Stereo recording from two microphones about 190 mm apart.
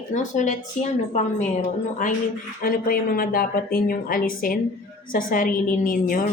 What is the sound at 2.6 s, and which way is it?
A woman's voice, 50° left (ahead or behind).